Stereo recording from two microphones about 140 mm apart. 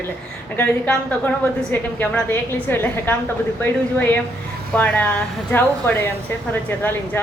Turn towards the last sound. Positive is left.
turn(degrees=15)  # may be behind; listen again after turning